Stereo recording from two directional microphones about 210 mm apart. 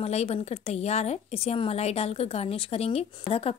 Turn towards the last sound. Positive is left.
turn(degrees=30)  # may be behind; listen again after turning